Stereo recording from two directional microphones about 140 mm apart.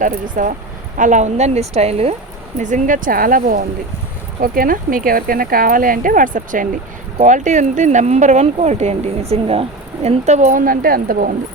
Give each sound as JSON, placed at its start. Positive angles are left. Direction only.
{"t": 0.0, "sound": "a woman's voice", "side_deg": -65}
{"t": 2.6, "sound": "speech", "side_deg": -60}